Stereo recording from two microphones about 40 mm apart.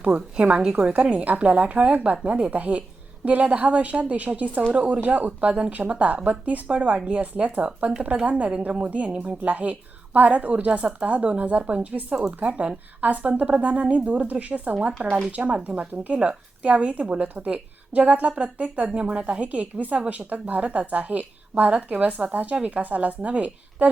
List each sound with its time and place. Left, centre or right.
0.1 s speech: right
4.7 s speech: right